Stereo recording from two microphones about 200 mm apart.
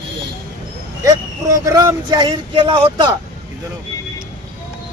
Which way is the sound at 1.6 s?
20° right (ahead or behind).